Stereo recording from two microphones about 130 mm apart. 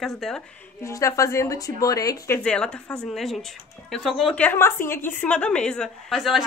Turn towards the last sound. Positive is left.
turn(degrees=0)  # may be behind; listen again after turning